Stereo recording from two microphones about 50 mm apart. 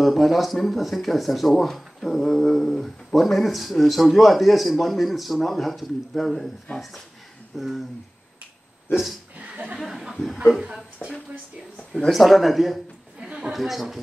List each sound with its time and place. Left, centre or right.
0.0 s speech: centre
7.5 s speech: centre
9.4 s chuckle: right
9.8 s speech: centre
12.1 s a man's voice: centre